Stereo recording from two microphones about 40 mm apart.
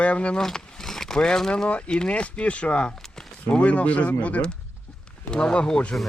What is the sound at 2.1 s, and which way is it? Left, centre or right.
Speech, left.